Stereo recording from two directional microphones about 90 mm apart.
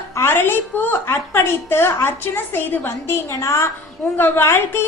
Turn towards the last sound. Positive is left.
turn(degrees=25)  # may be behind; listen again after turning